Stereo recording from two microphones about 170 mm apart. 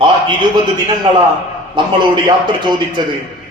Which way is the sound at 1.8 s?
25° right (ahead or behind).